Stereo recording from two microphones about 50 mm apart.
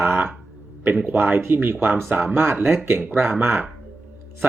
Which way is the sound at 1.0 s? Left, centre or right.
Right.